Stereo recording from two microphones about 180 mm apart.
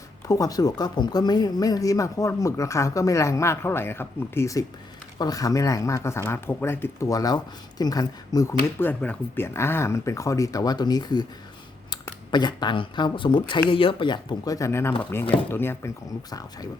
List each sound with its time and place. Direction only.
0.3 s speech: 20° left (ahead or behind)
12.3 s speech: 25° left (ahead or behind)